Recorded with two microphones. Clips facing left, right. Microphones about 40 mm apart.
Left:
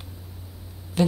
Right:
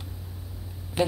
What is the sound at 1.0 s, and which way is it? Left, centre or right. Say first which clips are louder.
Speech: left 2 dB; centre.